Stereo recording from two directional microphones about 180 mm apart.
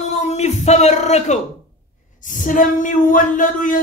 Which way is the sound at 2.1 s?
45° left (ahead or behind).